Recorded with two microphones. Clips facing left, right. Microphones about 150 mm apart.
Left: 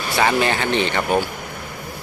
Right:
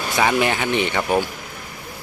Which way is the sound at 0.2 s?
15° right (ahead or behind).